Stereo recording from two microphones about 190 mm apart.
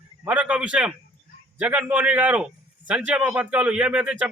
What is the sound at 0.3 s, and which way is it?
A man's voice, 5° right (ahead or behind).